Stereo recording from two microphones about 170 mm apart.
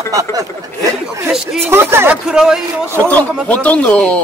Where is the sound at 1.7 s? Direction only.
15° right (ahead or behind).